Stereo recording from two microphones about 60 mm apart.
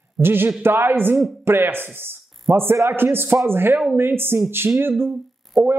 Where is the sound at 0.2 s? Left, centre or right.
Right.